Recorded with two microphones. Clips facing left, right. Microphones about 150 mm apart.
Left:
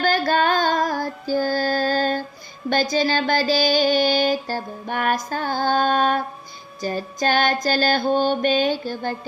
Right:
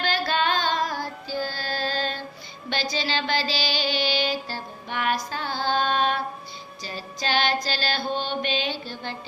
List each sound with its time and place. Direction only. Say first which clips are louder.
0.0 s music: left 6 dB; 45° left (ahead or behind)